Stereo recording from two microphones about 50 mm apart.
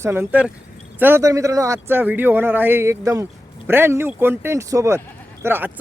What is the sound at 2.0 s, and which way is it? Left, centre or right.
A man's voice, right.